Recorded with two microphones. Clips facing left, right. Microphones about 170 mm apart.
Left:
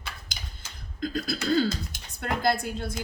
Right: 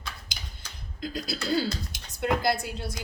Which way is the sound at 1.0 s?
50° left (ahead or behind).